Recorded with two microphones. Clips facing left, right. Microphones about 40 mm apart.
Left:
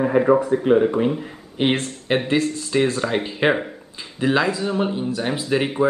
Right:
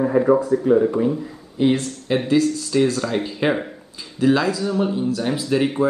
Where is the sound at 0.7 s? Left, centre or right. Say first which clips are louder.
Even; left.